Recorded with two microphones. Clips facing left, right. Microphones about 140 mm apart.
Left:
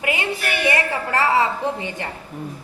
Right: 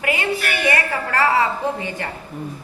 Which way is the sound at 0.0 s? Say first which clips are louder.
Right 2 dB; 20° left (ahead or behind).